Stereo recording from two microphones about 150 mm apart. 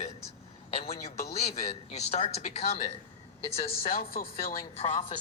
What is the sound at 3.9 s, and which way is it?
Speech, 75° left (ahead or behind).